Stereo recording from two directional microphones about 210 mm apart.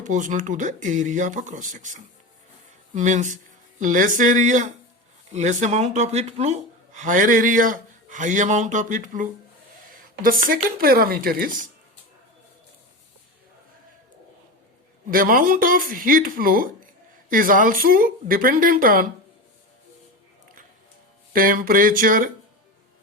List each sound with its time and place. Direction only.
0.0 s speech: 35° right (ahead or behind)
15.1 s speech: 40° right (ahead or behind)
21.3 s speech: 40° right (ahead or behind)